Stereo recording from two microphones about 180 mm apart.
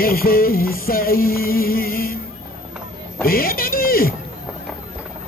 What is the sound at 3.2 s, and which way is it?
Music, 55° left (ahead or behind).